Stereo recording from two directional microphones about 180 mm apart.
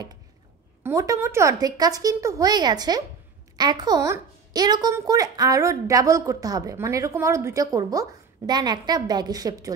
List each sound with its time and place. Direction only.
0.8 s a woman's voice: 15° right (ahead or behind)